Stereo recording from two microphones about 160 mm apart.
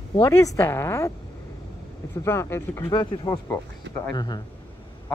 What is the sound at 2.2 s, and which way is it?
Speech, 15° left (ahead or behind).